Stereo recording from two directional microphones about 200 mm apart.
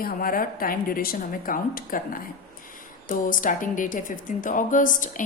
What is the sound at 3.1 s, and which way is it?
A woman's voice, 40° left (ahead or behind).